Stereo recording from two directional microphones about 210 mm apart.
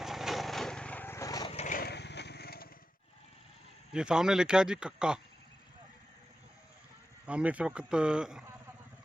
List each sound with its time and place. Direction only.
0.0 s lawn mower: centre (ahead or behind); by 1.5 s 15° left (ahead or behind)
1.5 s lawn mower: 40° left (ahead or behind)
3.9 s speech: 5° right (ahead or behind)
7.3 s speech: 5° right (ahead or behind)